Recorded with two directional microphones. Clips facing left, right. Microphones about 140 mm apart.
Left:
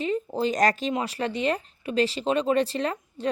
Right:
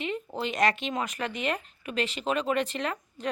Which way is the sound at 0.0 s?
35° left (ahead or behind).